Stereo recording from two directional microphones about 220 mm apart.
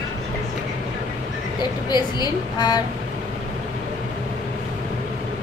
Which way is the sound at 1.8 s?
20° left (ahead or behind).